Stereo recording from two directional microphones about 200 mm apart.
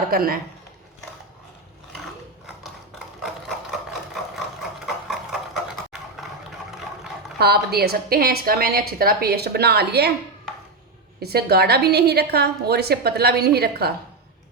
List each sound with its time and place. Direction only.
0.1 s a woman's voice: 45° right (ahead or behind)
3.2 s sewing machine: centre (ahead or behind)
5.0 s a sound: centre (ahead or behind)
7.3 s a woman's voice: 50° right (ahead or behind)
11.2 s a woman's voice: 50° right (ahead or behind)